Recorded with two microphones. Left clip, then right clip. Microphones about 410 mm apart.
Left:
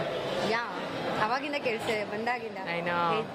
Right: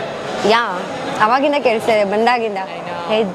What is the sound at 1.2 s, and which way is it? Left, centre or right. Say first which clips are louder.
A woman's voice: right 18 dB; right.